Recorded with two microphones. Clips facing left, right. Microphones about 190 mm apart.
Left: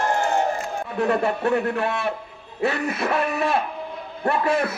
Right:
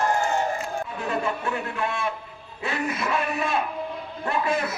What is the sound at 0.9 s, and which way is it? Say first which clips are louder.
A man's voice: left 8 dB; 65° left (ahead or behind).